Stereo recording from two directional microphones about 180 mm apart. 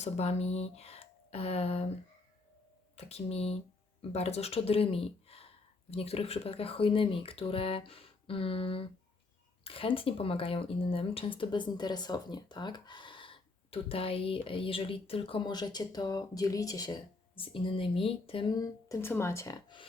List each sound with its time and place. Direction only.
0.0 s speech: 35° left (ahead or behind)
2.9 s speech: 35° left (ahead or behind)